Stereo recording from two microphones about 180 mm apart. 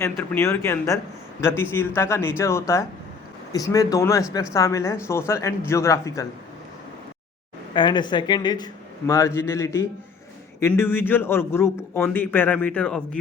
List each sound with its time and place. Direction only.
0.0 s a man's voice: 15° left (ahead or behind)
7.7 s a man's voice: 25° left (ahead or behind); by 13.0 s 5° left (ahead or behind)